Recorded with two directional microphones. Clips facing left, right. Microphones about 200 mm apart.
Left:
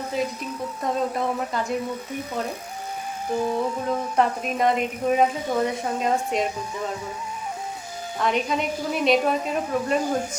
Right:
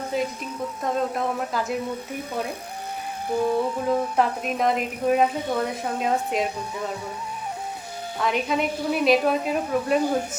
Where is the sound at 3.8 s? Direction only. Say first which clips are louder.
Even; centre (ahead or behind).